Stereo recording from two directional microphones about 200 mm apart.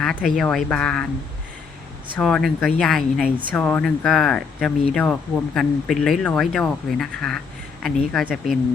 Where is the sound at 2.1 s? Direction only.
Centre (ahead or behind).